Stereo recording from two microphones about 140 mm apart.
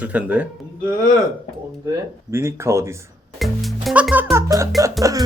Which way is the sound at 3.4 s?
Centre (ahead or behind).